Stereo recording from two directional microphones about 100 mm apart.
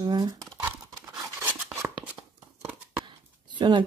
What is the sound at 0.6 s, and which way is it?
Scissors, 20° right (ahead or behind).